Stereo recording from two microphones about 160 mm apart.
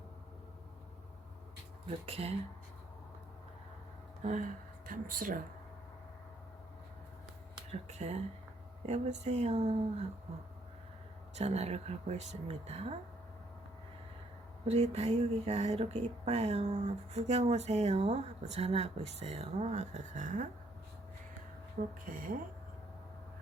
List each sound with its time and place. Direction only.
1.9 s speech: 40° right (ahead or behind)
4.2 s speech: 50° right (ahead or behind)
7.7 s speech: 45° right (ahead or behind)
11.3 s speech: 40° right (ahead or behind)
14.7 s speech: 40° right (ahead or behind)
21.8 s speech: 55° right (ahead or behind)